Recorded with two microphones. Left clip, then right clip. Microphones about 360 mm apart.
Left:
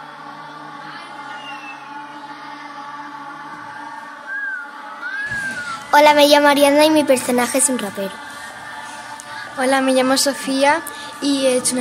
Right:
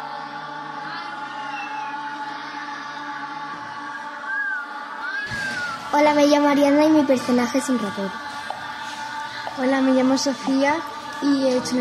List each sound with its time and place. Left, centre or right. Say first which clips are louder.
5.9 s a woman's voice: left 6 dB; left
9.6 s a woman's voice: left 4 dB; left